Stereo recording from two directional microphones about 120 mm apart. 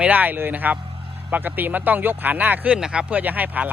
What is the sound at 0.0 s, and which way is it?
Speech, 15° right (ahead or behind).